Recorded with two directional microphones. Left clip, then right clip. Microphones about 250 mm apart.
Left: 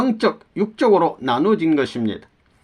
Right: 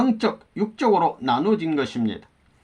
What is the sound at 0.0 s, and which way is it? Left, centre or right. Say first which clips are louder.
Speech: left 3 dB; left.